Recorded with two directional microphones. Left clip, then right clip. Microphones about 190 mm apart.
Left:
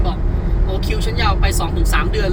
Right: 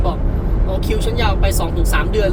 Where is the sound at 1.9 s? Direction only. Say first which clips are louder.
Right 3 dB; 25° right (ahead or behind).